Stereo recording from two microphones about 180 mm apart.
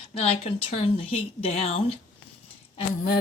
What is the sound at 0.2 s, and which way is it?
Speech, 35° left (ahead or behind).